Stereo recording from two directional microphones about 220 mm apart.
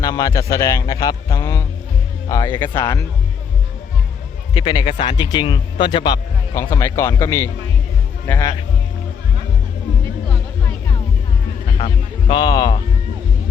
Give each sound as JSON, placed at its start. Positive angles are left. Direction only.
{"t": 0.0, "sound": "a man's voice", "side_deg": 15}
{"t": 4.5, "sound": "a man's voice", "side_deg": 20}
{"t": 12.3, "sound": "a man's voice", "side_deg": 20}